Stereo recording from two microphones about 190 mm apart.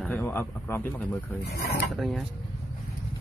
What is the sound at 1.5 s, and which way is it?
Speech, 55° left (ahead or behind).